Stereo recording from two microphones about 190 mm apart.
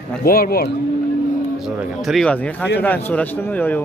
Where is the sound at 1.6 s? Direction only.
Centre (ahead or behind).